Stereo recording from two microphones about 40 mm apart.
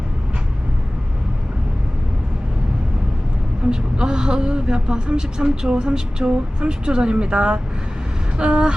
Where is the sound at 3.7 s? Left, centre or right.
Right.